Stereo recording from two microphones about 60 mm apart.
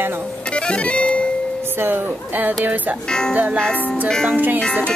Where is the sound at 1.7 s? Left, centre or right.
Right.